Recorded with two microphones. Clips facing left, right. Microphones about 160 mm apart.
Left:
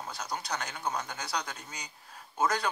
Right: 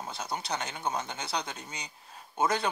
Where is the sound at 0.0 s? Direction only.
25° right (ahead or behind).